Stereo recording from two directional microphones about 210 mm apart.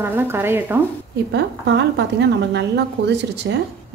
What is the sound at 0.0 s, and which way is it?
Speech, 10° right (ahead or behind).